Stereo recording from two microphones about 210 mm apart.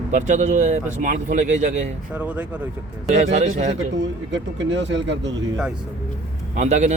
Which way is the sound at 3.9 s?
60° right (ahead or behind).